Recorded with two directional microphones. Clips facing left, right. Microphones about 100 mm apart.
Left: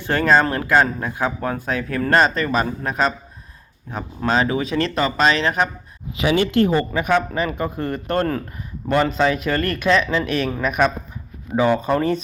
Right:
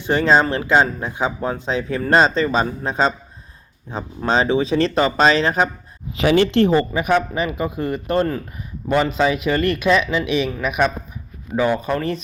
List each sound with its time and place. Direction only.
0.0 s speech: 20° right (ahead or behind)
6.9 s speech: 15° right (ahead or behind)